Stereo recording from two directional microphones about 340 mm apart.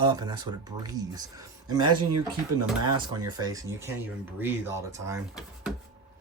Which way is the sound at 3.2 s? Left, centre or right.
Centre.